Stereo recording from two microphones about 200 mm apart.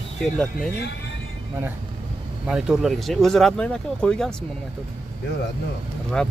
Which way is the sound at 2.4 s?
5° right (ahead or behind).